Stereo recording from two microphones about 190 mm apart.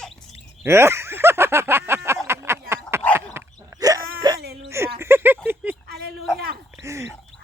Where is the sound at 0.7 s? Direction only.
15° right (ahead or behind).